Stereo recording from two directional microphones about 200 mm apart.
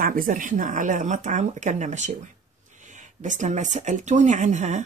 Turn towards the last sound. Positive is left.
turn(degrees=-35)  # may be behind; listen again after turning